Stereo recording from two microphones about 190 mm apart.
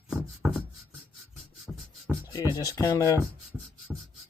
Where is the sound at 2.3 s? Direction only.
20° left (ahead or behind).